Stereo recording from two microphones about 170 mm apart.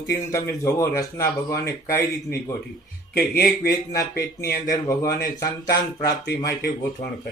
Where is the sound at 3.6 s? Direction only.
20° left (ahead or behind).